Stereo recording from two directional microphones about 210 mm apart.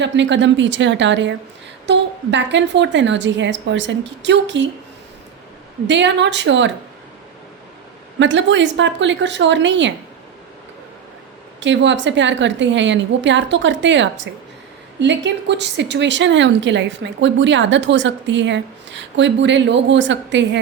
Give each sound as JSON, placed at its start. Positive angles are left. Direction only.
{"t": 0.0, "sound": "speech", "side_deg": -60}
{"t": 5.9, "sound": "speech", "side_deg": -60}
{"t": 8.2, "sound": "speech", "side_deg": -60}
{"t": 11.6, "sound": "speech", "side_deg": -60}